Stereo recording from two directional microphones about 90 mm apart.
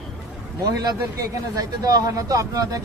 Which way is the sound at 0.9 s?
45° right (ahead or behind).